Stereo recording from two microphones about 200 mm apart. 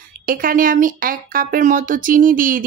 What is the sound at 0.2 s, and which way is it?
Speech, 45° right (ahead or behind).